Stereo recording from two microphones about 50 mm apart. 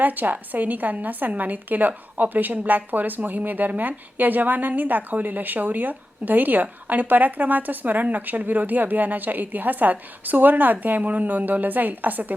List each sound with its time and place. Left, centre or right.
0.0 s a woman's voice: right